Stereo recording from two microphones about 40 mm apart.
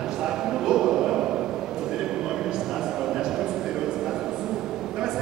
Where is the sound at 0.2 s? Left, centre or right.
Centre.